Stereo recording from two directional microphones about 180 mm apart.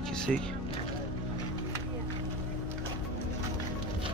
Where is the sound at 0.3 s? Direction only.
Centre (ahead or behind).